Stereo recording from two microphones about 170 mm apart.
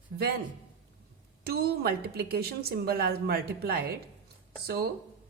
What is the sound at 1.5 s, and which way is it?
A woman's voice, 70° right (ahead or behind).